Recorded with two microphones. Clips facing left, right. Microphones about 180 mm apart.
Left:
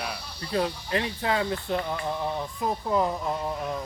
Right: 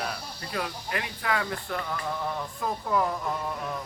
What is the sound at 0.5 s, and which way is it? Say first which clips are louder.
Speech: left 6 dB; 30° left (ahead or behind).